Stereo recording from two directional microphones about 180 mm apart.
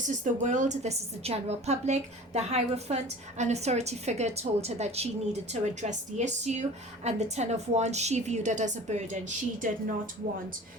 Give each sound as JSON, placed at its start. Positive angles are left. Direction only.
{"t": 0.4, "sound": "a woman's voice", "side_deg": -40}